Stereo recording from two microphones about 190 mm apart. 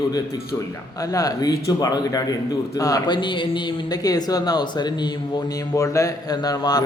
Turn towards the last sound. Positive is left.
turn(degrees=20)  # may be behind; listen again after turning